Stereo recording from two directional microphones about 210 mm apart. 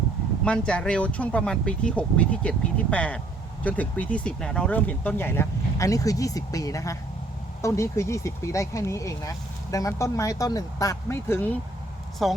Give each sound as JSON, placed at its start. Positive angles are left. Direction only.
{"t": 0.4, "sound": "speech", "side_deg": 5}
{"t": 12.2, "sound": "speech", "side_deg": 0}